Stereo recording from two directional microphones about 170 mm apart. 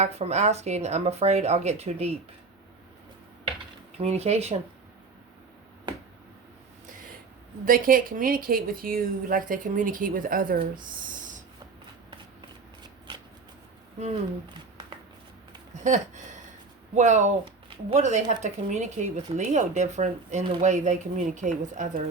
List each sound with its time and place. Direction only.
0.0 s speech: 40° right (ahead or behind)
3.9 s speech: 40° right (ahead or behind)
7.6 s a woman's voice: 55° right (ahead or behind)
15.9 s speech: 45° right (ahead or behind)